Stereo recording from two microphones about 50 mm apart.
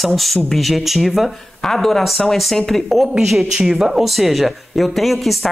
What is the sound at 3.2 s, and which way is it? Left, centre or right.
Speech, centre.